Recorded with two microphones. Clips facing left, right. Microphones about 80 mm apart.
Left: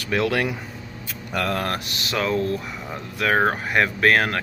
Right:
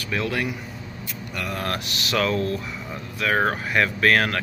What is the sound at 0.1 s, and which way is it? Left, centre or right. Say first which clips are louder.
Speech: left 4 dB; left.